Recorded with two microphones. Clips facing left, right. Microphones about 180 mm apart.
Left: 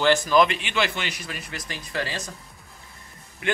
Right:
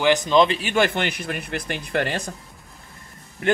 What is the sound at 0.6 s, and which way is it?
Speech, 45° right (ahead or behind).